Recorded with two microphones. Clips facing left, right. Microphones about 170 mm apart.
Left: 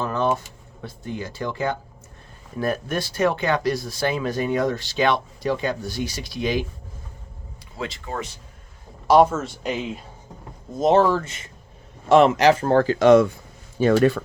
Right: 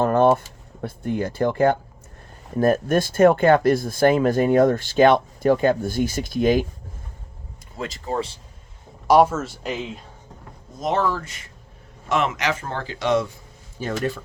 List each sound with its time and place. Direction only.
0.0 s speech: 55° right (ahead or behind)
7.8 s speech: 40° right (ahead or behind)
8.1 s speech: 30° right (ahead or behind)
9.0 s speech: 10° right (ahead or behind)
10.8 s speech: 25° left (ahead or behind); by 13.3 s 50° left (ahead or behind)
13.7 s speech: 75° left (ahead or behind)